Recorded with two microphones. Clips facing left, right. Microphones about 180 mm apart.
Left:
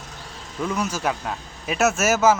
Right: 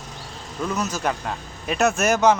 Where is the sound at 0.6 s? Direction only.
10° left (ahead or behind).